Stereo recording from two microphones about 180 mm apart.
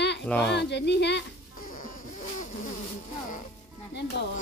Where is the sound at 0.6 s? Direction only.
70° left (ahead or behind).